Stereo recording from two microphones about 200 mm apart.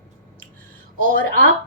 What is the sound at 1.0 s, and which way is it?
Speech, 40° right (ahead or behind).